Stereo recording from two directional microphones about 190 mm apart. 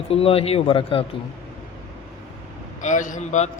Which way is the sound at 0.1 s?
30° left (ahead or behind).